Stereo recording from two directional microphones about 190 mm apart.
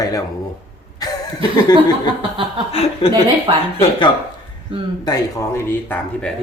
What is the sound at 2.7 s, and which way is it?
Speech, 30° left (ahead or behind).